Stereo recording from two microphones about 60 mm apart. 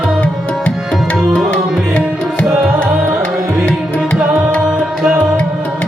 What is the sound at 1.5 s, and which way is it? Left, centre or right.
Music, centre.